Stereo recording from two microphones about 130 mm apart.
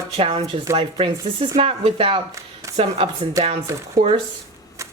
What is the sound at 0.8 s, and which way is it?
A woman's voice, 45° right (ahead or behind).